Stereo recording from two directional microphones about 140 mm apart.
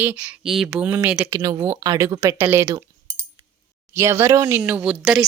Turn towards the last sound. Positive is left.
turn(degrees=-5)  # may be behind; listen again after turning